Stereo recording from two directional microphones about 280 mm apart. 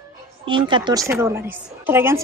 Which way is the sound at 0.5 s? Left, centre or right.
Centre.